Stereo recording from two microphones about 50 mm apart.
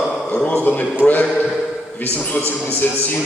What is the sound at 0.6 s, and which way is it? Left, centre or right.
Speech, left.